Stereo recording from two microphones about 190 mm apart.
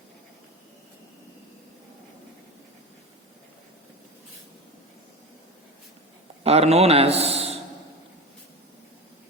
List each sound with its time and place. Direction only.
6.4 s a man's voice: 35° right (ahead or behind)